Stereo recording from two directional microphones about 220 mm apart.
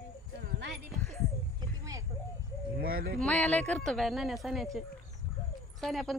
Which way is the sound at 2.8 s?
45° right (ahead or behind).